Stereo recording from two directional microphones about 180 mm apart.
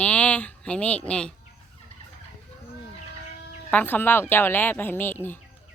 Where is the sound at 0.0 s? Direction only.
5° left (ahead or behind).